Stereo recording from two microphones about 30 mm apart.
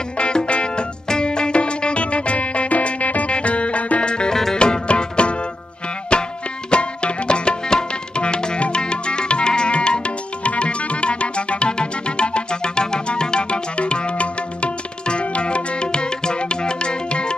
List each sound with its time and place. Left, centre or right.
0.5 s music: left
1.0 s music: left
3.3 s music: left
4.0 s music: left
4.3 s music: centre
4.6 s music: left
6.7 s tabla: left
9.8 s music: left